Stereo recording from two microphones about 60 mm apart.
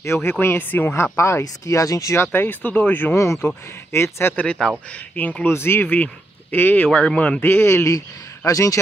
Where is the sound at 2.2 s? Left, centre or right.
Left.